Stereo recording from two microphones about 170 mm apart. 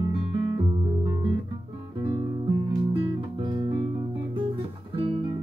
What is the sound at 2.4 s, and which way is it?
Music, 30° right (ahead or behind).